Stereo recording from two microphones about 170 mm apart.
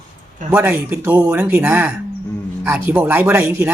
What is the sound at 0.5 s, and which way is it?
Speech, 15° right (ahead or behind).